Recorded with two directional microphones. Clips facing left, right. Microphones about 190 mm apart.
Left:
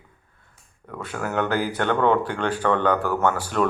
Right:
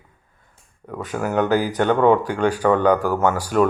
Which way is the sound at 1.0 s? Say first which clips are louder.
Right 4 dB; 15° right (ahead or behind).